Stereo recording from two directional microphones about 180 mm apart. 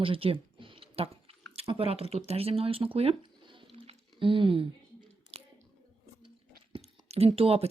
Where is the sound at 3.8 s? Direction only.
30° right (ahead or behind).